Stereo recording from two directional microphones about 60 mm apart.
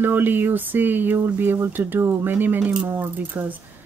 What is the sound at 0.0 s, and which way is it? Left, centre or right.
Speech, right.